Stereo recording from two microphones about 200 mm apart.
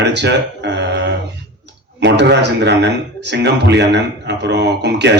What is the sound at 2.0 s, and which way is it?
A man's voice, 60° right (ahead or behind).